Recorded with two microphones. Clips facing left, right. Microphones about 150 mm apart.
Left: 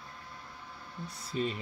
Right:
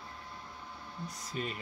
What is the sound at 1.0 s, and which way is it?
Speech, 30° left (ahead or behind).